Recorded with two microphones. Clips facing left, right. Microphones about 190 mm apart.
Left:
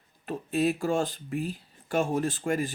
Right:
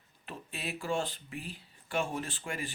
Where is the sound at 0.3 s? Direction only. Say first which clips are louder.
Left 14 dB; 45° left (ahead or behind).